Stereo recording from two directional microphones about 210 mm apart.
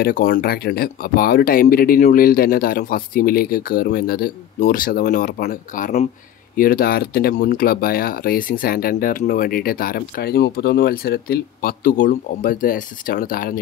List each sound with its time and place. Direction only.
0.0 s speech: 45° left (ahead or behind)